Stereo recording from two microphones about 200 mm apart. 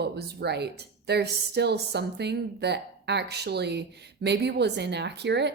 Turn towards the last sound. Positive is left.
turn(degrees=-60)  # may be behind; listen again after turning